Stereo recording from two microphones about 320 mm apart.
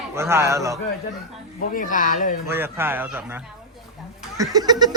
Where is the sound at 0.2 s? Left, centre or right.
Centre.